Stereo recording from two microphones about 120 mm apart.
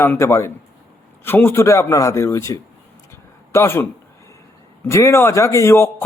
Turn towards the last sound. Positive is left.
turn(degrees=20)  # may be behind; listen again after turning